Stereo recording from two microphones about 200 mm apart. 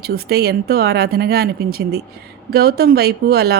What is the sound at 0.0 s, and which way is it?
Speech, 50° right (ahead or behind).